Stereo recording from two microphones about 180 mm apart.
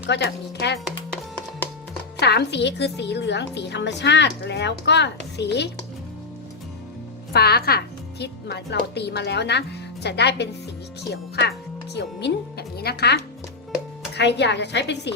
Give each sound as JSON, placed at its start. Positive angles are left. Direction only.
{"t": 0.1, "sound": "a woman's voice", "side_deg": 70}
{"t": 2.1, "sound": "a woman's voice", "side_deg": 65}
{"t": 7.3, "sound": "a woman's voice", "side_deg": 60}
{"t": 14.2, "sound": "a woman's voice", "side_deg": 70}